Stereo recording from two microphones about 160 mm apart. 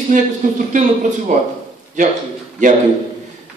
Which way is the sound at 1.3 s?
50° right (ahead or behind).